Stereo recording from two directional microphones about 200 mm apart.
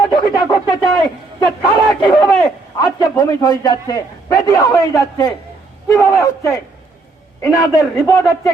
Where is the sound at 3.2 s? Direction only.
20° left (ahead or behind).